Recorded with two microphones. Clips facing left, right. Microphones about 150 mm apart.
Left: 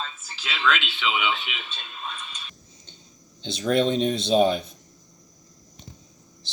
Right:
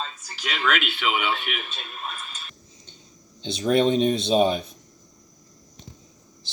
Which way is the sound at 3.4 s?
Centre (ahead or behind).